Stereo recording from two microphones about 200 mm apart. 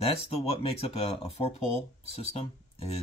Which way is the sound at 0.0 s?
30° left (ahead or behind).